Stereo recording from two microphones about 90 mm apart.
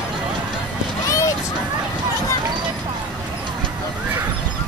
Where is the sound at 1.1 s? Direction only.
35° left (ahead or behind).